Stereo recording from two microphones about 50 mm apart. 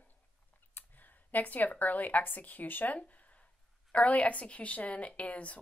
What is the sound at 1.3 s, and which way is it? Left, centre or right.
A woman's voice, left.